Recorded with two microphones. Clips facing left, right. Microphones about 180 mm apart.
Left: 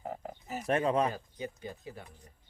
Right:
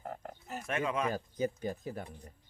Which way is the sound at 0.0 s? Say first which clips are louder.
Left 3 dB; 5° left (ahead or behind).